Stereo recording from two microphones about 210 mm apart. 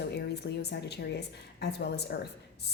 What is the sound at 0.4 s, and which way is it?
Speech, 50° left (ahead or behind).